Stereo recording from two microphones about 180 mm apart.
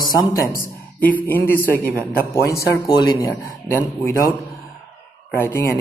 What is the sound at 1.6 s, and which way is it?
Speech, 15° right (ahead or behind).